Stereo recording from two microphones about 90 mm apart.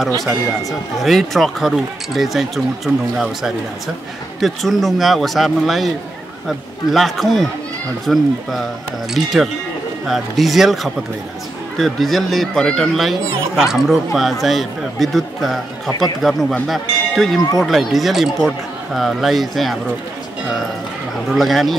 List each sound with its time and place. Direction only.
0.2 s speech: centre (ahead or behind)
6.9 s speech: centre (ahead or behind)
21.3 s speech: centre (ahead or behind)